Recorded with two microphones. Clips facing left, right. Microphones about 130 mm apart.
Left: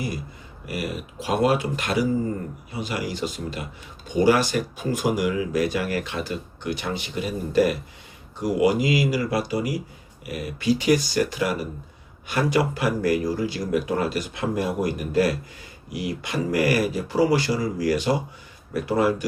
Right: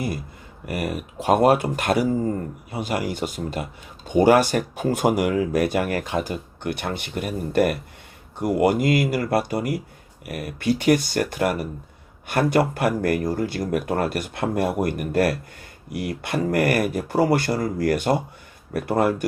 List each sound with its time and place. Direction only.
0.6 s speech: 55° right (ahead or behind)